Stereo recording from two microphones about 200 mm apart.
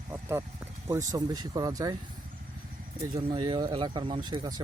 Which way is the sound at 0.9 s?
15° right (ahead or behind).